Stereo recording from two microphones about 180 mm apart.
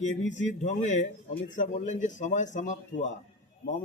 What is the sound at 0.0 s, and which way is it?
A man's voice, 40° left (ahead or behind).